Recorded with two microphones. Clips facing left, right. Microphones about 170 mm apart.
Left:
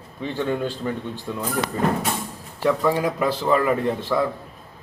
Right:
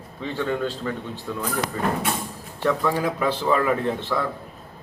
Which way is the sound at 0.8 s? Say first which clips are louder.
Left 2 dB; 20° left (ahead or behind).